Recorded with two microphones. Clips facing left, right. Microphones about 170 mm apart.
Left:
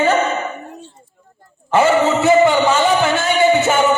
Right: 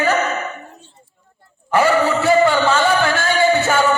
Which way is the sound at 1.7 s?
20° left (ahead or behind).